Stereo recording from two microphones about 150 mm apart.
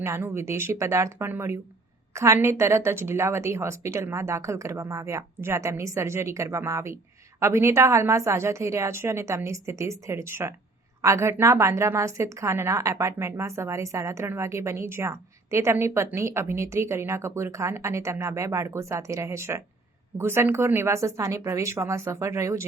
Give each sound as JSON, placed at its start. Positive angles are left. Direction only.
{"t": 0.0, "sound": "a woman's voice", "side_deg": -15}